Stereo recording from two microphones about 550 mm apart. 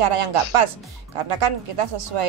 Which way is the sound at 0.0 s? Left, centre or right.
Right.